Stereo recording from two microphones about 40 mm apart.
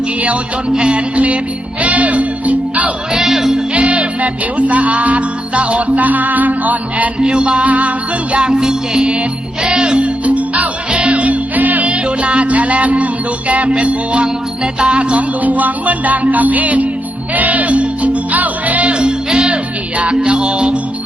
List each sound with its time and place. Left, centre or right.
0.7 s music: right
3.1 s speech: centre
3.8 s music: right
7.2 s music: right
8.4 s music: right
10.2 s music: right
12.0 s music: right
18.9 s music: right